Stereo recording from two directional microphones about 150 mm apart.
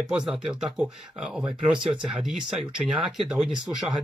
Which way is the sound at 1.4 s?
30° right (ahead or behind).